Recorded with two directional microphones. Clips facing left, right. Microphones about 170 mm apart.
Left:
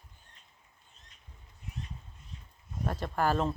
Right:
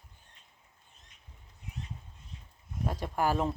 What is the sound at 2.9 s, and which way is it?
Speech, 10° right (ahead or behind).